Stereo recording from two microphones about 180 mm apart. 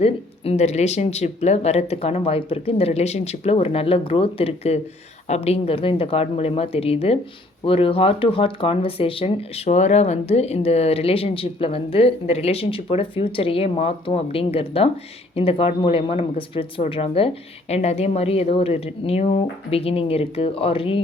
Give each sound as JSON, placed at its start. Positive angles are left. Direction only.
{"t": 0.0, "sound": "speech", "side_deg": 35}